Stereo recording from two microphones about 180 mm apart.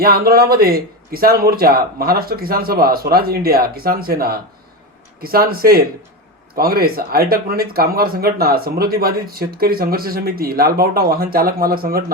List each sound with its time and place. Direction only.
0.0 s speech: 55° right (ahead or behind)